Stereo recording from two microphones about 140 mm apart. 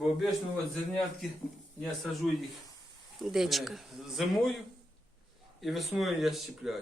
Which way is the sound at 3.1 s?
Centre (ahead or behind).